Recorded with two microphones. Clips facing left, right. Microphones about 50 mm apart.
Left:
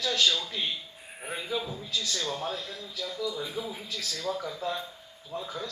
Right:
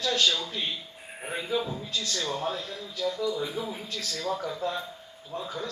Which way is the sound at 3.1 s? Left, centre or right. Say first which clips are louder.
Right 1 dB; right.